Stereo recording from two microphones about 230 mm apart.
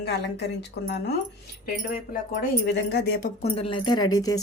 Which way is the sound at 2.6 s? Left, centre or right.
Left.